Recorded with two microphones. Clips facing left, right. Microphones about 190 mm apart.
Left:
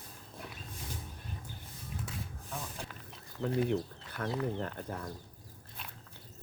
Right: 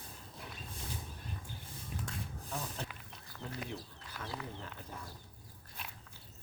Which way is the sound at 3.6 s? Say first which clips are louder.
Left 12 dB; 60° left (ahead or behind).